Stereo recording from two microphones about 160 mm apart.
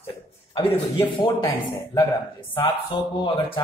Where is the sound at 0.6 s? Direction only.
30° left (ahead or behind).